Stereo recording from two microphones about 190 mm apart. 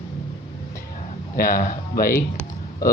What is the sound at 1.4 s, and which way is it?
Speech, 45° left (ahead or behind).